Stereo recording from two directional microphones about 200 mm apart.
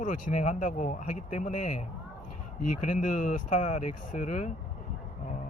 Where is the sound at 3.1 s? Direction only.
40° left (ahead or behind).